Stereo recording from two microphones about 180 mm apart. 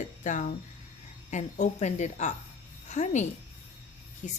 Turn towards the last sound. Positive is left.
turn(degrees=45)  # may be behind; listen again after turning